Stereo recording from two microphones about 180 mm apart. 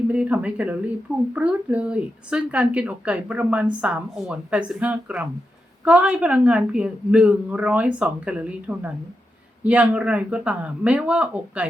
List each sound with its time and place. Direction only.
0.1 s a woman's voice: 10° right (ahead or behind)